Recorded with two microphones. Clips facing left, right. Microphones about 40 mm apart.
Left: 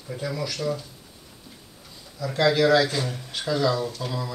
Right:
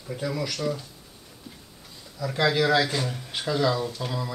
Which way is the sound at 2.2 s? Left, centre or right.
Centre.